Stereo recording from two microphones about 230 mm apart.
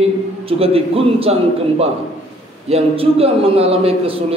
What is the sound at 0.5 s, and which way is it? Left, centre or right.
Speech, right.